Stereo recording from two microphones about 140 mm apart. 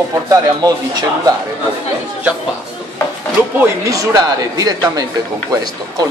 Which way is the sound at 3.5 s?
25° right (ahead or behind).